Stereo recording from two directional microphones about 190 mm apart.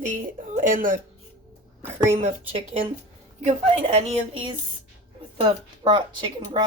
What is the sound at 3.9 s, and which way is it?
Speech, 25° right (ahead or behind).